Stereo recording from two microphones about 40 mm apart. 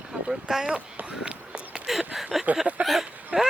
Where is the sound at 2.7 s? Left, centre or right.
Right.